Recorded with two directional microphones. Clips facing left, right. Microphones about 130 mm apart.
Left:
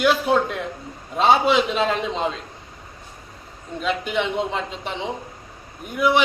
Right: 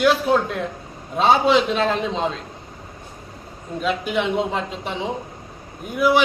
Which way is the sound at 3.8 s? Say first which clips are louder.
Right 1 dB; centre (ahead or behind).